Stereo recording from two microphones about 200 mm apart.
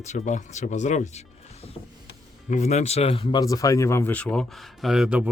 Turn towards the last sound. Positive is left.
turn(degrees=-5)  # may be behind; listen again after turning